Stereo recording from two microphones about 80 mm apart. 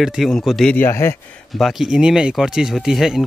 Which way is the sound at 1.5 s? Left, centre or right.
Centre.